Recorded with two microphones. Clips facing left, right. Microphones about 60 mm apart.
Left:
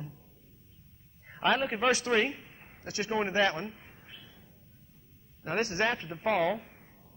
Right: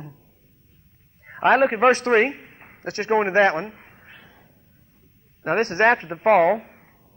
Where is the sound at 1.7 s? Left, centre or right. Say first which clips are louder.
Right 10 dB; right.